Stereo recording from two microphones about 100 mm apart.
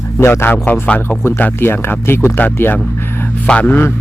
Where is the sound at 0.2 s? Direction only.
25° left (ahead or behind).